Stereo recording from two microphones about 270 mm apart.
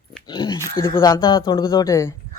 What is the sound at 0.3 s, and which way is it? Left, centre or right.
Speech, centre.